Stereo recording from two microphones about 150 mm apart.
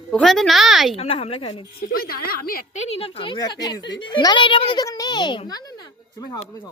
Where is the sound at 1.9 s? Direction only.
85° left.